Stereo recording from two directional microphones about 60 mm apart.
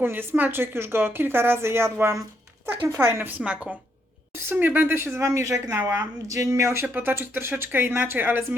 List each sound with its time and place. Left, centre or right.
0.0 s a woman's voice: right
3.2 s a woman's voice: right
4.4 s speech: right
6.8 s a woman's voice: right